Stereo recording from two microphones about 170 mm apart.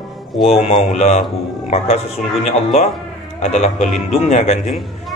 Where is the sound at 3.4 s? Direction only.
45° left (ahead or behind).